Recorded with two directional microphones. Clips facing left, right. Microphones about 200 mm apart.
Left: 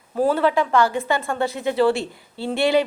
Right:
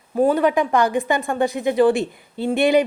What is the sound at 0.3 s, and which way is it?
A woman's voice, 15° right (ahead or behind).